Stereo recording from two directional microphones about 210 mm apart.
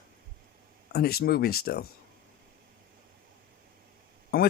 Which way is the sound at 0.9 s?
45° left (ahead or behind).